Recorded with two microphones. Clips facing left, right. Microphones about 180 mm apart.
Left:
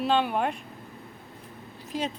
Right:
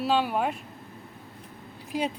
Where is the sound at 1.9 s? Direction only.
10° right (ahead or behind).